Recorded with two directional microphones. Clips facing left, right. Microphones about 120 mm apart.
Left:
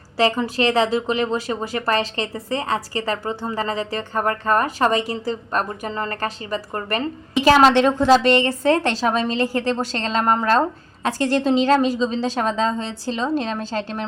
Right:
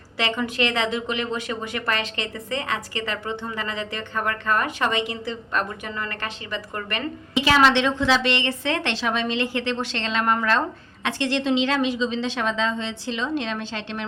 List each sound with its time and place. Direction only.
0.2 s speech: 35° left (ahead or behind)